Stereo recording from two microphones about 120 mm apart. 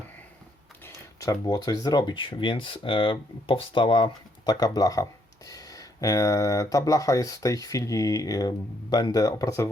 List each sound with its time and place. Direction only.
1.2 s speech: 30° left (ahead or behind)